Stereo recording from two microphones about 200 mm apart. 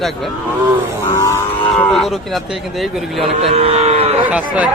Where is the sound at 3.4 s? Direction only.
30° right (ahead or behind).